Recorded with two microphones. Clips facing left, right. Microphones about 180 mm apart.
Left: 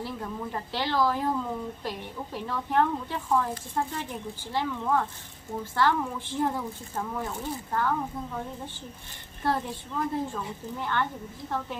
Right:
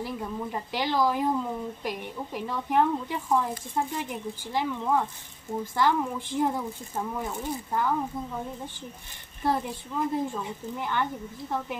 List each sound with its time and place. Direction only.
0.0 s speech: 15° right (ahead or behind)
9.4 s speech: 15° right (ahead or behind)